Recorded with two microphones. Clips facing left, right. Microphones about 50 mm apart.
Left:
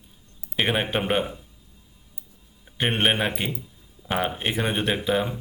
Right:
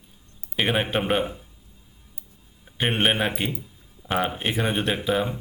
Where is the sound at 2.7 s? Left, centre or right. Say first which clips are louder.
Even; centre.